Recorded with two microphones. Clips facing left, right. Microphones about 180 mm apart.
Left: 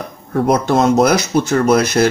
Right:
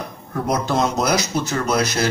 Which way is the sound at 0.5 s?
55° left (ahead or behind).